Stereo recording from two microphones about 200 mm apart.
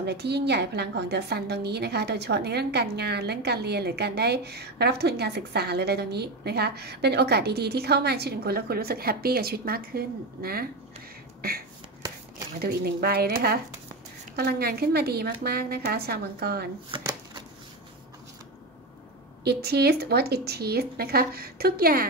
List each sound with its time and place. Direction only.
0.0 s a woman's voice: 55° right (ahead or behind)
12.5 s a woman's voice: 50° right (ahead or behind)
16.9 s a sound: 20° right (ahead or behind)
19.4 s a woman's voice: 55° right (ahead or behind)